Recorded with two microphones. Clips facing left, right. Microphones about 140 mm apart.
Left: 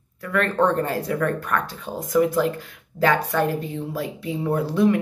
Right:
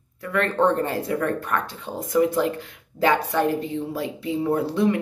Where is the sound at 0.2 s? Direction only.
25° right (ahead or behind).